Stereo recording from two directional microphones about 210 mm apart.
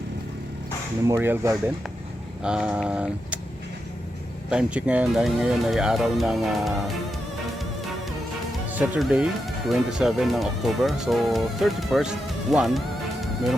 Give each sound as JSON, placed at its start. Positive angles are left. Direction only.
{"t": 1.0, "sound": "speech", "side_deg": -10}
{"t": 4.4, "sound": "speech", "side_deg": -5}
{"t": 8.7, "sound": "speech", "side_deg": -5}